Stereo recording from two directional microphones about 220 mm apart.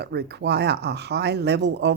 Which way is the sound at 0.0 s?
50° right (ahead or behind).